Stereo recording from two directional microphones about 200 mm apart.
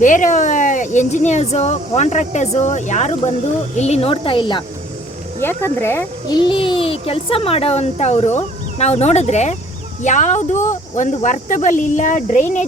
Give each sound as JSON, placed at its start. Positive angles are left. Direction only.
{"t": 0.0, "sound": "speech", "side_deg": 40}
{"t": 5.4, "sound": "speech", "side_deg": 10}
{"t": 6.4, "sound": "speech", "side_deg": 25}